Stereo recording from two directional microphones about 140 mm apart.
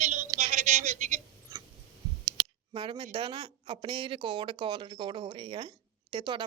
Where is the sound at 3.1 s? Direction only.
35° right (ahead or behind).